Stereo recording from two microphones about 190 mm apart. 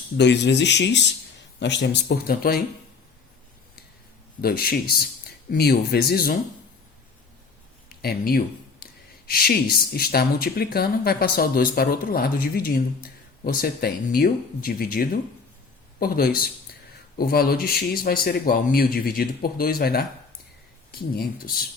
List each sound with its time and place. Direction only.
0.2 s speech: 65° left (ahead or behind)
4.4 s speech: 50° left (ahead or behind)
7.9 s speech: 55° left (ahead or behind)
21.2 s speech: 50° left (ahead or behind)